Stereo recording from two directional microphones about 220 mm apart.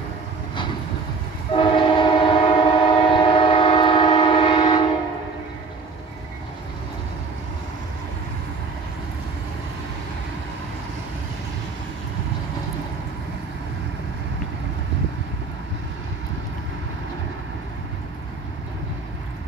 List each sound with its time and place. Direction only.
1.5 s train: 25° left (ahead or behind)